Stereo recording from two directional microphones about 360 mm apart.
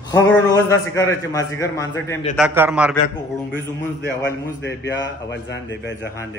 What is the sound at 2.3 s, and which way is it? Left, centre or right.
Speech, centre.